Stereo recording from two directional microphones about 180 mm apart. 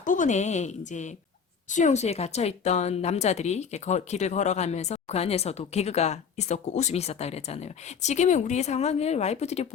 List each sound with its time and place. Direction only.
0.0 s speech: 45° left (ahead or behind)